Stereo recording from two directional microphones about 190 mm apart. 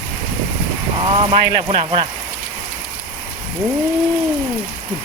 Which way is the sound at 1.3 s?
25° right (ahead or behind).